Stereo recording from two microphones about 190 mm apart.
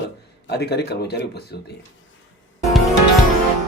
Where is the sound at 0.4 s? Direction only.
60° left (ahead or behind).